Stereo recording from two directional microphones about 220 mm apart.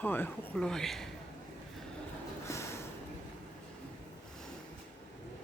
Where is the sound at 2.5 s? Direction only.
10° left (ahead or behind).